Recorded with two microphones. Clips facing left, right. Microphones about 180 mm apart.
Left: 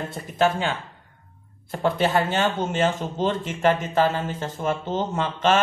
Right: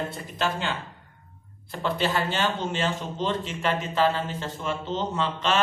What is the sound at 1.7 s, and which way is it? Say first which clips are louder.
A man's voice: left 5 dB; 50° left (ahead or behind).